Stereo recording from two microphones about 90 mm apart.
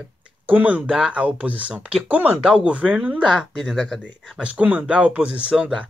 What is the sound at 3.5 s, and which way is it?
Speech, centre (ahead or behind).